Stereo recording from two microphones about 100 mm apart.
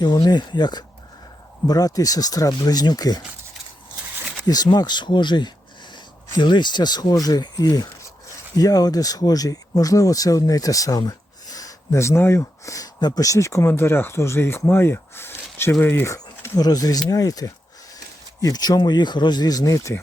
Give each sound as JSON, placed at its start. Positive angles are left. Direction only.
{"t": 0.0, "sound": "speech", "side_deg": 45}
{"t": 4.4, "sound": "speech", "side_deg": 40}
{"t": 14.7, "sound": "a sound", "side_deg": 20}
{"t": 15.8, "sound": "speech", "side_deg": 20}
{"t": 16.1, "sound": "speech", "side_deg": 40}